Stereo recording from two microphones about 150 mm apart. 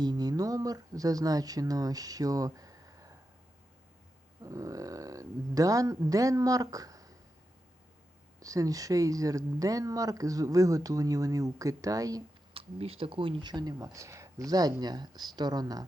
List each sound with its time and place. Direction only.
0.0 s speech: 25° right (ahead or behind)
4.4 s speech: 20° right (ahead or behind)
8.4 s speech: 25° right (ahead or behind)
12.5 s speech: 40° right (ahead or behind)